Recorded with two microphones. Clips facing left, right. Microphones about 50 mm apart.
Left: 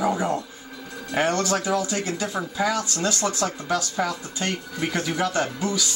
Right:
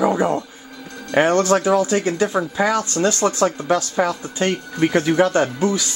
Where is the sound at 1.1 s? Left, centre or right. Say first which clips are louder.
Right 7 dB; right.